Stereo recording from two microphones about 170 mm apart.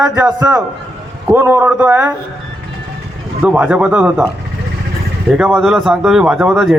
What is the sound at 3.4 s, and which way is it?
Speech, 10° right (ahead or behind).